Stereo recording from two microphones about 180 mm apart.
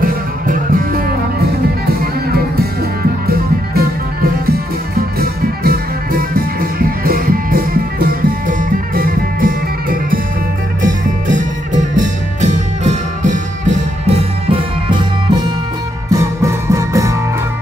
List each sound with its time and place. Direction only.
0.0 s music: 50° right (ahead or behind)
2.3 s music: 60° right (ahead or behind); by 17.1 s 15° right (ahead or behind)